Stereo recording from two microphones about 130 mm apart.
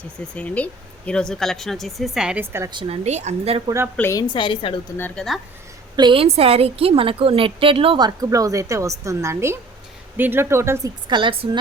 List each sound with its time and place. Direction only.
0.3 s speech: 10° left (ahead or behind); by 2.4 s 5° right (ahead or behind)
2.4 s speech: 20° right (ahead or behind)
2.8 s a woman's voice: 55° right (ahead or behind)
4.1 s a woman's voice: 35° left (ahead or behind)
4.9 s a woman's voice: 15° left (ahead or behind)
6.0 s a woman's voice: 40° right (ahead or behind)
6.2 s a woman's voice: 50° right (ahead or behind); by 10.9 s 20° right (ahead or behind)
11.1 s a woman's voice: 40° right (ahead or behind)